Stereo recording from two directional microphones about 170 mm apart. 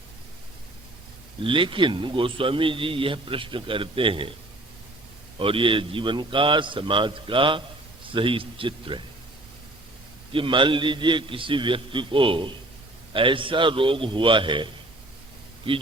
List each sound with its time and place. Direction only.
1.5 s a man's voice: 30° right (ahead or behind)
5.4 s a man's voice: 30° right (ahead or behind)
10.3 s a man's voice: 30° right (ahead or behind)